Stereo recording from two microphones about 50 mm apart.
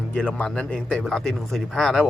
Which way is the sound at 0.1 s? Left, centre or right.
Left.